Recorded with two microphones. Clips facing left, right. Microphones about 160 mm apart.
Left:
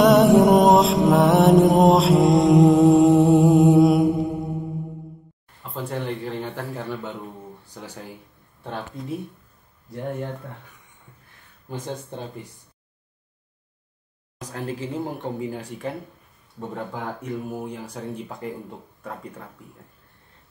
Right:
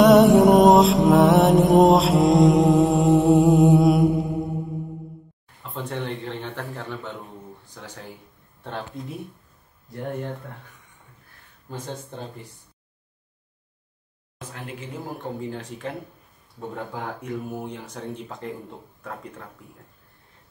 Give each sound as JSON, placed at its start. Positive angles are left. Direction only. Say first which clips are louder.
{"t": 0.0, "sound": "music", "louder": "right 1 dB", "side_deg": 0}
{"t": 5.6, "sound": "a sound", "louder": "left 1 dB", "side_deg": 5}
{"t": 7.7, "sound": "speech", "louder": "left 3 dB", "side_deg": 10}
{"t": 14.4, "sound": "speech", "louder": "left 6 dB", "side_deg": 35}
{"t": 15.3, "sound": "speech", "louder": "left 2 dB", "side_deg": 10}